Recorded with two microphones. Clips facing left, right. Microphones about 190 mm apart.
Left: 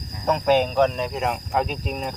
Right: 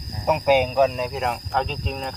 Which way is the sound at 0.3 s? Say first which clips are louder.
Right 1 dB; 10° right (ahead or behind).